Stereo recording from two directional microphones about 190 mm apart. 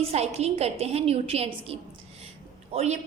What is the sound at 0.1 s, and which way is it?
A woman's voice, 35° right (ahead or behind).